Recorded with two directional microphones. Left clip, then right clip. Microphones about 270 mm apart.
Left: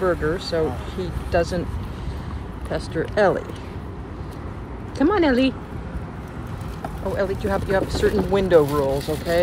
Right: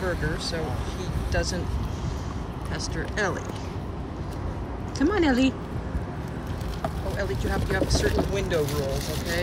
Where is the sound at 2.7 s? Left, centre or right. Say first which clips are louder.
Left 8 dB; centre.